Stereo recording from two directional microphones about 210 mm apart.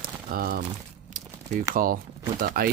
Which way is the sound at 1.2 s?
35° right (ahead or behind).